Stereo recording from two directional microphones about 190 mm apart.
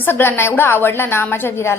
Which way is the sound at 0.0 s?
10° left (ahead or behind).